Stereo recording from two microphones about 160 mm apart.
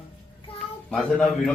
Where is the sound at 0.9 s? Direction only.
5° left (ahead or behind).